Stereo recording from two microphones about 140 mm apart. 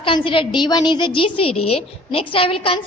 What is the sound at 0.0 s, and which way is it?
A woman's voice, 35° left (ahead or behind).